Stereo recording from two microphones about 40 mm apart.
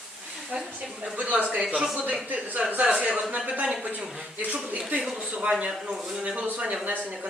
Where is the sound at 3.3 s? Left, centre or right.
Right.